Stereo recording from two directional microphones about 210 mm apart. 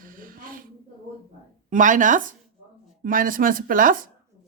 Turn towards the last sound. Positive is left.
turn(degrees=-40)  # may be behind; listen again after turning